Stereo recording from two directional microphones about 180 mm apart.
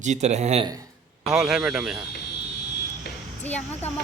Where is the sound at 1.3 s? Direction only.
5° right (ahead or behind).